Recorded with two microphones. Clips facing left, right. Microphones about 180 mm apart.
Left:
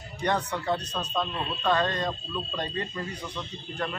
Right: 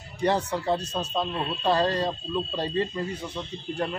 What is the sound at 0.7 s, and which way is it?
A man's voice, 30° right (ahead or behind).